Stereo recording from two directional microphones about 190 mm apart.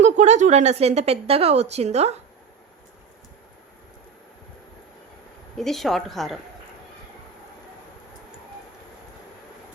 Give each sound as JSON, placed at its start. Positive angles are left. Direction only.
{"t": 0.0, "sound": "a woman's voice", "side_deg": -40}
{"t": 5.5, "sound": "a woman's voice", "side_deg": 0}